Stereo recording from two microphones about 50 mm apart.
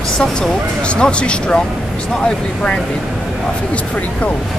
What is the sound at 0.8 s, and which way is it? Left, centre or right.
Speech, left.